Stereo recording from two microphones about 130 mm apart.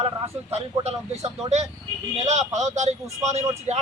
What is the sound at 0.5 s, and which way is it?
Speech, 55° right (ahead or behind).